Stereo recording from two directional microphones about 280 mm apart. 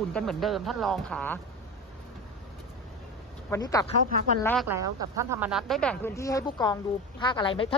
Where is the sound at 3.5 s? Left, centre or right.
Centre.